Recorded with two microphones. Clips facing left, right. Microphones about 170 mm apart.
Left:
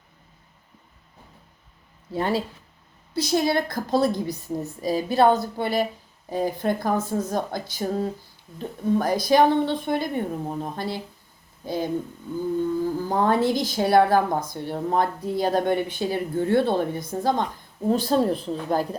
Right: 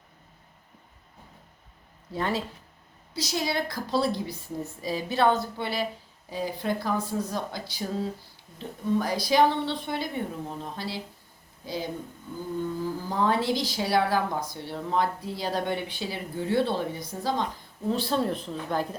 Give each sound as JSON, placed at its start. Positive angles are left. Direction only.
{"t": 2.1, "sound": "a woman's voice", "side_deg": 30}
{"t": 3.2, "sound": "a woman's voice", "side_deg": 55}